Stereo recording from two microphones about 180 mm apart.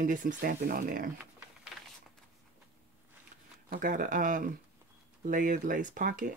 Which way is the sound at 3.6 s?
50° right (ahead or behind).